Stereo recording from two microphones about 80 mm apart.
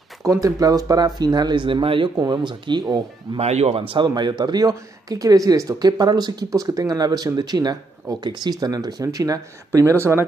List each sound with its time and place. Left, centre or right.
0.2 s speech: right
2.1 s speech: right
2.4 s speech: right
3.3 s speech: right
3.8 s speech: right
4.1 s speech: right
9.8 s speech: right